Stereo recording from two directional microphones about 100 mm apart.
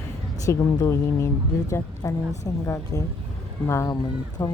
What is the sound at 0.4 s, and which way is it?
Speech, 35° left (ahead or behind).